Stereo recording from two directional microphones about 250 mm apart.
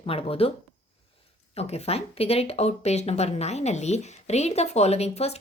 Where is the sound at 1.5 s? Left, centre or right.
Left.